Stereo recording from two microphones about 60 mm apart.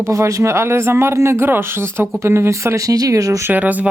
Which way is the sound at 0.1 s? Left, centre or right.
Right.